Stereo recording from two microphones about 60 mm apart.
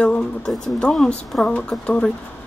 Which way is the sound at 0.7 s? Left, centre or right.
Centre.